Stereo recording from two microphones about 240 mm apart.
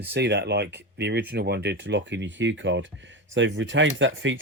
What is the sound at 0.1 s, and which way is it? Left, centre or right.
Speech, right.